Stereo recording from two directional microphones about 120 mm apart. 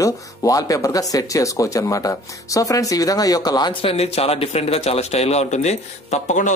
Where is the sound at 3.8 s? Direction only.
55° left (ahead or behind).